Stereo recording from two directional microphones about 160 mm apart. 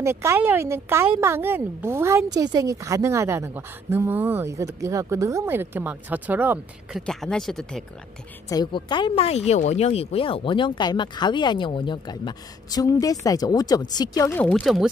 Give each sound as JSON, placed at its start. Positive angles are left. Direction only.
{"t": 0.0, "sound": "a woman's voice", "side_deg": -15}
{"t": 7.0, "sound": "speech", "side_deg": 5}
{"t": 8.5, "sound": "speech", "side_deg": 25}
{"t": 14.3, "sound": "speech", "side_deg": 5}